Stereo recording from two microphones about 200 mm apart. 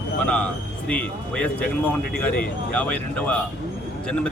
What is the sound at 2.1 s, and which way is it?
Speech, 45° left (ahead or behind).